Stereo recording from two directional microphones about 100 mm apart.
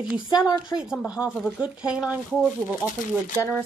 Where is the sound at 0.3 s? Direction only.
40° left (ahead or behind).